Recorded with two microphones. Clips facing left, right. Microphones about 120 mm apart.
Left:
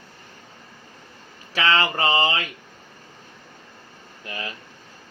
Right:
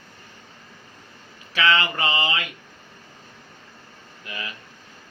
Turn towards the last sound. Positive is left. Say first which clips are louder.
# left 2 dB
turn(degrees=35)  # may be behind; listen again after turning